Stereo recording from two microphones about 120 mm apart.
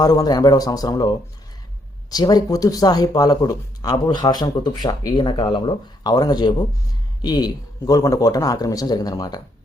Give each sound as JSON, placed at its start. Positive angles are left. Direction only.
{"t": 0.0, "sound": "speech", "side_deg": 30}